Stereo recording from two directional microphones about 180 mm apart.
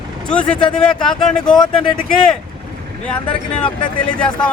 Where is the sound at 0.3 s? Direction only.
5° left (ahead or behind).